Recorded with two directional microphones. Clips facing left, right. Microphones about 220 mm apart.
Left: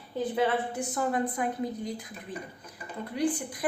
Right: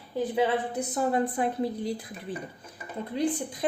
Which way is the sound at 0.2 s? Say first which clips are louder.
Right 2 dB; 15° right (ahead or behind).